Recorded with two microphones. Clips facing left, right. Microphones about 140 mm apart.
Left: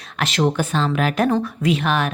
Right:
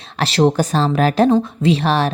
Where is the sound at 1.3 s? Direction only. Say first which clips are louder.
Right 4 dB; 25° right (ahead or behind).